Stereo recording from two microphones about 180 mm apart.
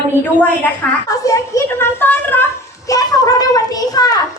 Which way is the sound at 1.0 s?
20° left (ahead or behind).